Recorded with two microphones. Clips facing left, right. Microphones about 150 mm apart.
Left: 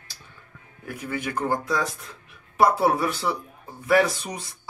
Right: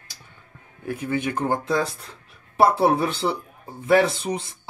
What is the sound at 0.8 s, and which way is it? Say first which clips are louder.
Speech: right 5 dB; 25° right (ahead or behind).